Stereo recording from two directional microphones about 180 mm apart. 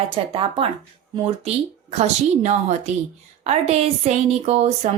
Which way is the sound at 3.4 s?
35° right (ahead or behind).